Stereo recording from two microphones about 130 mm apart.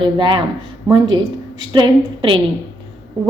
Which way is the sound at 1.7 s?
40° right (ahead or behind).